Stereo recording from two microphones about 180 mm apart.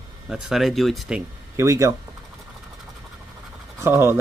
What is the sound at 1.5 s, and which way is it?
Speech, 15° right (ahead or behind).